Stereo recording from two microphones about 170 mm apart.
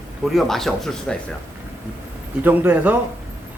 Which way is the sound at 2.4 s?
10° right (ahead or behind).